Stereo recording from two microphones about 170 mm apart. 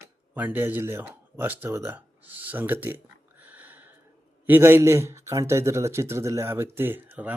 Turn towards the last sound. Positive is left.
turn(degrees=-10)  # may be behind; listen again after turning